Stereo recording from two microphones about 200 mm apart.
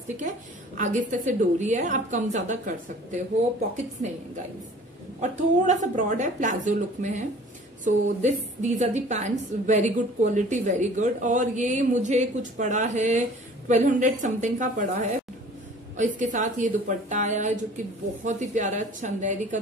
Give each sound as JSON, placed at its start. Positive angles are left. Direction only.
{"t": 0.7, "sound": "a woman's voice", "side_deg": -35}
{"t": 5.2, "sound": "a woman's voice", "side_deg": -35}